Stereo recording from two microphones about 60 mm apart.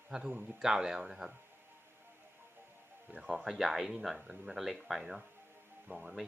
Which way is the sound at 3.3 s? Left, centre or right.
Centre.